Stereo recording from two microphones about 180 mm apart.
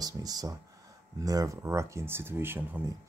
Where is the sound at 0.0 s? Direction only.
20° right (ahead or behind).